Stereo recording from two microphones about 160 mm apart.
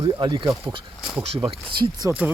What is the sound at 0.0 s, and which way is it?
Speech, 30° right (ahead or behind).